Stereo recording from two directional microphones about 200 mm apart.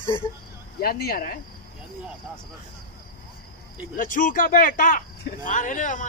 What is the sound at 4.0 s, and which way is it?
Speech, 45° left (ahead or behind).